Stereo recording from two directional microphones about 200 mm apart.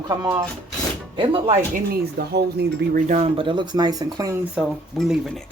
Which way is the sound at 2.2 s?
50° right (ahead or behind).